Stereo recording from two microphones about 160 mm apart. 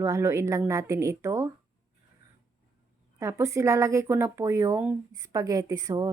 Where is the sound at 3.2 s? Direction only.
15° right (ahead or behind).